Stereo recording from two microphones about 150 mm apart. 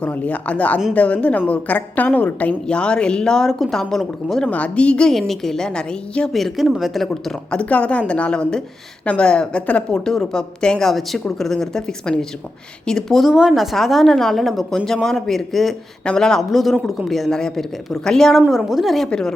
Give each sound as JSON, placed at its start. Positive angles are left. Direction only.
{"t": 0.0, "sound": "a woman's voice", "side_deg": 10}